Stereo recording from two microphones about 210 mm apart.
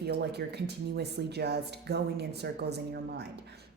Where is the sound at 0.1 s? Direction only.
50° right (ahead or behind).